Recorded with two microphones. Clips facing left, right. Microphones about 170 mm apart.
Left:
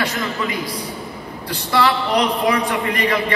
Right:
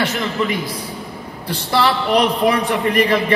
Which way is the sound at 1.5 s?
25° right (ahead or behind).